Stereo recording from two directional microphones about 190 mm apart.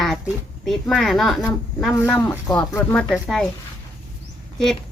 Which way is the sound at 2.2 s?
15° left (ahead or behind).